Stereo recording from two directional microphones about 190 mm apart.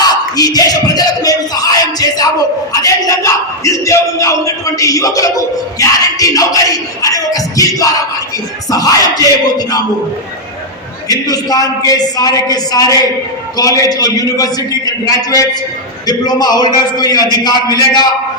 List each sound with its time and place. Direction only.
0.0 s a sound: 20° left (ahead or behind)
2.8 s a man's voice: 15° left (ahead or behind)
11.1 s a man's voice: 20° left (ahead or behind)